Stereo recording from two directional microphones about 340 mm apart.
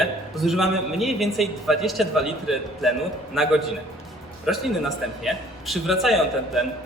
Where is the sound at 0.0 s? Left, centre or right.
Centre.